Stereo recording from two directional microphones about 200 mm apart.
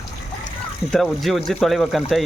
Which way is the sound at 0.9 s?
Centre (ahead or behind).